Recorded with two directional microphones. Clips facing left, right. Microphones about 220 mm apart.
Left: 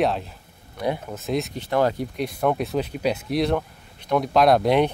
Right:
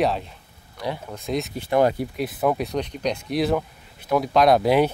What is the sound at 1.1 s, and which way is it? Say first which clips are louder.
Speech: left 1 dB; centre (ahead or behind).